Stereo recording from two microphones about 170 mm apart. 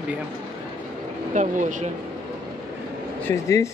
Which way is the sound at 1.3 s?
45° right (ahead or behind).